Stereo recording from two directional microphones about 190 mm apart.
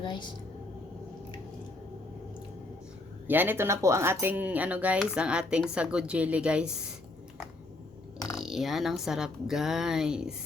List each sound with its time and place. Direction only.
0.0 s a woman's voice: 25° left (ahead or behind)
3.2 s speech: 10° right (ahead or behind)
8.4 s a woman's voice: centre (ahead or behind)